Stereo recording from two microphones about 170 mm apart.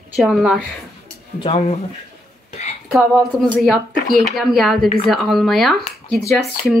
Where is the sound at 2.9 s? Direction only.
Centre (ahead or behind).